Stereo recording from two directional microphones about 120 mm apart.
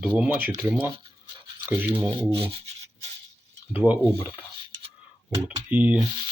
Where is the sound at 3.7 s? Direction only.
15° right (ahead or behind).